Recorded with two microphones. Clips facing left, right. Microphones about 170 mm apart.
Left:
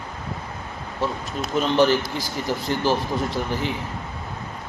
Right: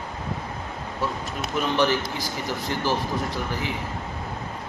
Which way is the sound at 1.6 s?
30° left (ahead or behind).